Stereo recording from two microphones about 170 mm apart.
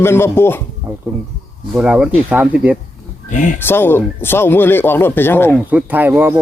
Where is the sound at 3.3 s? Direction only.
50° left (ahead or behind).